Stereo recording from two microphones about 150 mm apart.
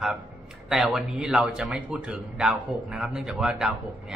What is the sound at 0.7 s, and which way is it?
A man's voice, 5° right (ahead or behind).